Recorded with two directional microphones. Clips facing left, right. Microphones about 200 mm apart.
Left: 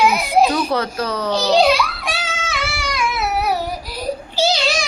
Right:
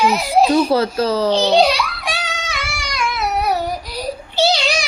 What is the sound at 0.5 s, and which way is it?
Speech, 30° right (ahead or behind).